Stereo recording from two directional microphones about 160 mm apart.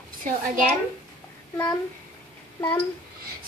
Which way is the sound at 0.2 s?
60° right (ahead or behind).